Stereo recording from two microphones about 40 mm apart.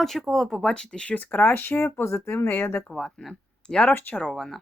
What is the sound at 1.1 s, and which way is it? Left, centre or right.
Speech, left.